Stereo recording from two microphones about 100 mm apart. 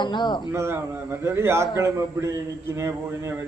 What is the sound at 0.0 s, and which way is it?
Speech, 50° left (ahead or behind).